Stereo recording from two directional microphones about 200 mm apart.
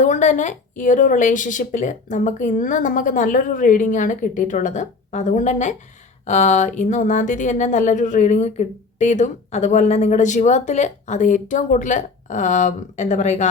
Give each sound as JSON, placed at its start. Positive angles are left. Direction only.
{"t": 0.0, "sound": "speech", "side_deg": 40}